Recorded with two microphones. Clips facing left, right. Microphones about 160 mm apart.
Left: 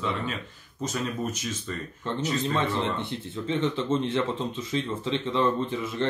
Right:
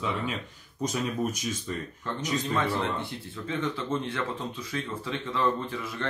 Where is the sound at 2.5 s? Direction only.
20° left (ahead or behind).